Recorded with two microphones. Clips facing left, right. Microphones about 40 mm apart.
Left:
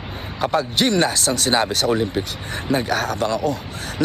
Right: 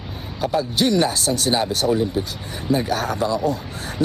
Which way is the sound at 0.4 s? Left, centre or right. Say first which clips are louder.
Left 1 dB; left.